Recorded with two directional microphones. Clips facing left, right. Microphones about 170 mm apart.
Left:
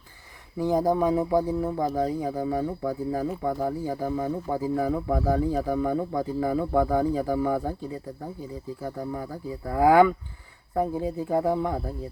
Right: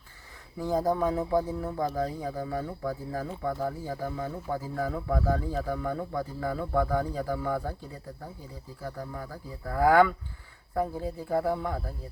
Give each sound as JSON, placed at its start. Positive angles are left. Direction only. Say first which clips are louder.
{"t": 0.6, "sound": "speech", "louder": "left 4 dB", "side_deg": 15}
{"t": 8.8, "sound": "speech", "louder": "left 4 dB", "side_deg": 20}